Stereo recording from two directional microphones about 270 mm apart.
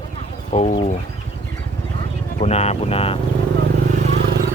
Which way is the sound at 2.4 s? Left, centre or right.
Left.